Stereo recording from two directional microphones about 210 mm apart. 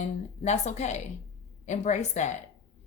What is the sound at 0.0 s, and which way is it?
Speech, 30° left (ahead or behind).